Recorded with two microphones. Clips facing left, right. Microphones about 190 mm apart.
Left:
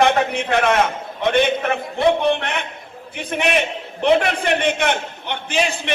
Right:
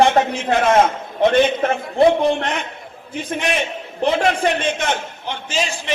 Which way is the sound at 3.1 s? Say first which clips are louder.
Left 1 dB; 60° left (ahead or behind).